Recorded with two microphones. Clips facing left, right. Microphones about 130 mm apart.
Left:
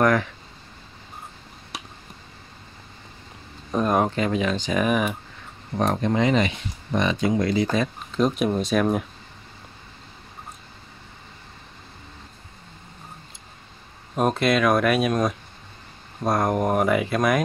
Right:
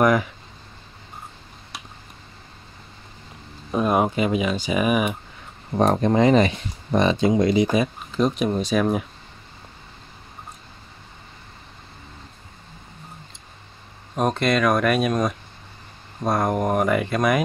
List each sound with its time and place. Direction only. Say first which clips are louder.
0.0 s speech: right 1 dB; 10° right (ahead or behind)
3.7 s speech: right 1 dB; 10° right (ahead or behind)
5.9 s speech: right 4 dB; 35° right (ahead or behind); by 7.9 s 15° right (ahead or behind)
8.1 s speech: left 1 dB; centre (ahead or behind)
14.1 s speech: even; centre (ahead or behind)